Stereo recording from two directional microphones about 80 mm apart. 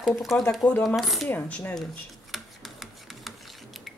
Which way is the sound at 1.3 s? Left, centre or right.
Left.